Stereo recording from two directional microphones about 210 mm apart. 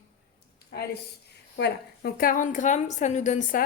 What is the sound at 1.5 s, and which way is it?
A woman's voice, 50° left (ahead or behind).